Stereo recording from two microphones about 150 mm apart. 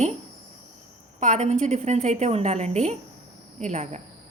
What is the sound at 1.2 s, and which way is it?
A woman's voice, 50° right (ahead or behind).